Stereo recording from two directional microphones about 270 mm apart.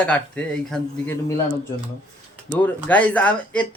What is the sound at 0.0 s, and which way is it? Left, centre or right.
Speech, centre.